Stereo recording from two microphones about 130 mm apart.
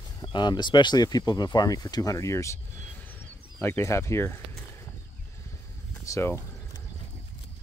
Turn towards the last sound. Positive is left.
turn(degrees=20)  # may be behind; listen again after turning